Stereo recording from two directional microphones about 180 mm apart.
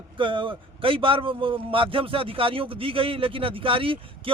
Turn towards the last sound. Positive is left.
turn(degrees=-30)  # may be behind; listen again after turning